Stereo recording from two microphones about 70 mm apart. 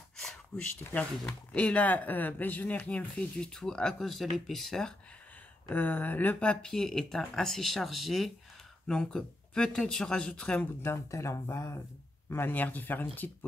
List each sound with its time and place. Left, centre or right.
0.9 s speech: left; by 4.9 s centre
5.7 s speech: left
6.4 s speech: centre
8.8 s speech: centre
10.8 s speech: left